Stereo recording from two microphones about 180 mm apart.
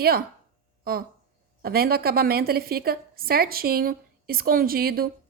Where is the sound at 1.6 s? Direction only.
55° right (ahead or behind).